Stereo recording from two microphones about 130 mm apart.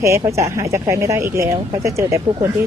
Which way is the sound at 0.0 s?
20° right (ahead or behind).